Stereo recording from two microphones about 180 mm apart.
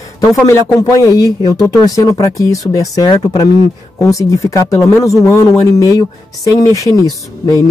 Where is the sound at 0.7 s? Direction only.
20° left (ahead or behind).